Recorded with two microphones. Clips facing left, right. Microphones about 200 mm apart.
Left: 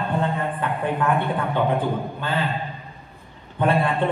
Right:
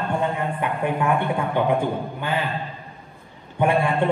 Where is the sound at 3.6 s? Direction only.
15° right (ahead or behind).